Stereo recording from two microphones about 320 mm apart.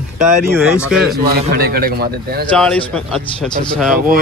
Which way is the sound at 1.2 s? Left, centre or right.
Right.